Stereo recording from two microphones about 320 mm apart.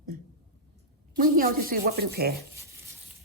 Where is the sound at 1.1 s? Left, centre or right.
Right.